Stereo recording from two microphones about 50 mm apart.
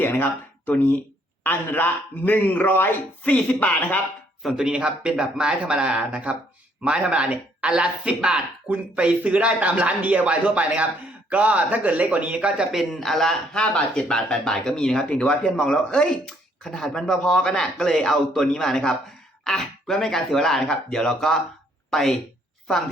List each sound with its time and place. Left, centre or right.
0.0 s speech: left
3.2 s speech: left
3.8 s speech: left
4.4 s speech: centre
12.7 s speech: centre